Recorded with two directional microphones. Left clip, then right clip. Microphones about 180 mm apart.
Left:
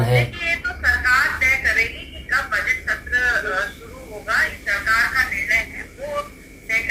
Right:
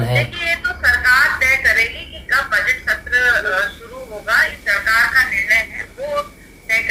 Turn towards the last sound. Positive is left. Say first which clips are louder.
# right 4 dB
turn(degrees=-25)  # may be behind; listen again after turning